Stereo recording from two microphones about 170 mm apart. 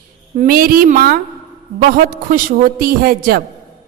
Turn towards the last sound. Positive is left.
turn(degrees=-60)  # may be behind; listen again after turning